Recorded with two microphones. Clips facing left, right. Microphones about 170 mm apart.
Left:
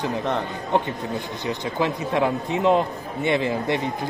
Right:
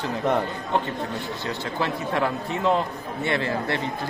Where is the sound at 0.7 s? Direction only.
15° left (ahead or behind).